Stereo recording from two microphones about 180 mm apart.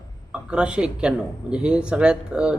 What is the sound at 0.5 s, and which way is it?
Speech, 5° right (ahead or behind).